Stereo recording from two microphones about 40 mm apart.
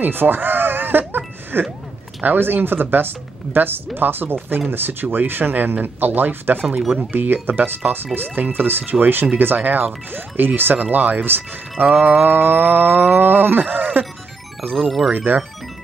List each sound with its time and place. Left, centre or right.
0.0 s music: right
2.2 s speech: right
14.6 s speech: left
15.1 s speech: right